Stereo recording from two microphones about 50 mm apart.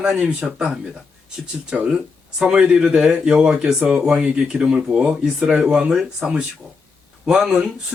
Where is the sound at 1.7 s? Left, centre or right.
Centre.